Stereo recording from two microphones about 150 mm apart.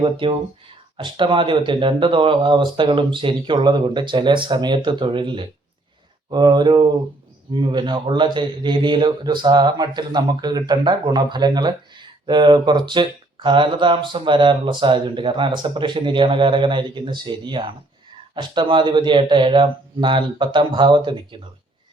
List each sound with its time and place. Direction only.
0.0 s speech: 35° right (ahead or behind)